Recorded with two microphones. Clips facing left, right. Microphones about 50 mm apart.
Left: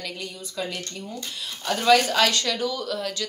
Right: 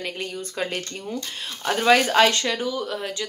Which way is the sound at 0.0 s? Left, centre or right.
Right.